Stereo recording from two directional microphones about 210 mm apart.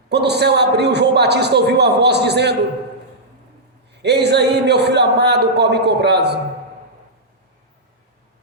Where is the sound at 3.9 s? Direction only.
50° right (ahead or behind).